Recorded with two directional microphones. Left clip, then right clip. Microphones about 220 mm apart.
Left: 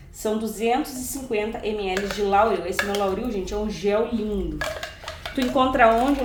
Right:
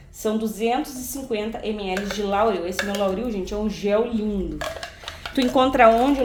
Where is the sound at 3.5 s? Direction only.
30° right (ahead or behind).